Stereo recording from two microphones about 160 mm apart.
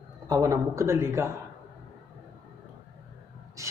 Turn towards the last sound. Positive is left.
turn(degrees=-20)  # may be behind; listen again after turning